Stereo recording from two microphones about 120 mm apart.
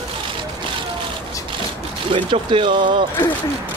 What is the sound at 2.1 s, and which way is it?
Speech, 45° right (ahead or behind).